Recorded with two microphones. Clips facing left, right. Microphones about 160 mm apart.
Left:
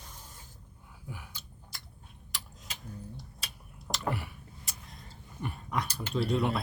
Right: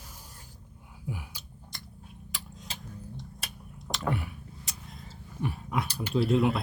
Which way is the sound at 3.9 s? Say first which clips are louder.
Right 3 dB; centre (ahead or behind).